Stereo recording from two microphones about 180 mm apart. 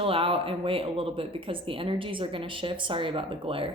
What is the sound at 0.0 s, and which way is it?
Speech, 30° right (ahead or behind).